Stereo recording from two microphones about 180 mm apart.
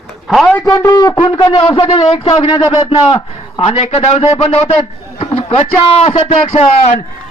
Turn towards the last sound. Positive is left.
turn(degrees=30)  # may be behind; listen again after turning